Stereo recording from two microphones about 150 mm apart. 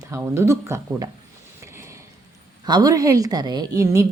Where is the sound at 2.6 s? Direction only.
25° right (ahead or behind).